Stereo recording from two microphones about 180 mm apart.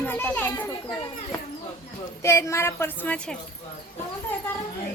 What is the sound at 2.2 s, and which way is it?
A woman's voice, 15° left (ahead or behind).